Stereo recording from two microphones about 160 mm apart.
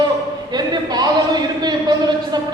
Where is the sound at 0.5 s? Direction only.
25° right (ahead or behind).